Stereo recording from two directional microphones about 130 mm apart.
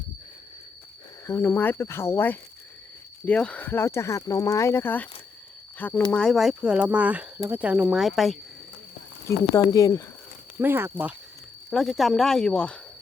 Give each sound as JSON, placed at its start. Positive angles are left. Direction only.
{"t": 1.3, "sound": "speech", "side_deg": 20}
{"t": 9.4, "sound": "speech", "side_deg": 25}
{"t": 10.6, "sound": "speech", "side_deg": -15}
{"t": 11.7, "sound": "speech", "side_deg": 0}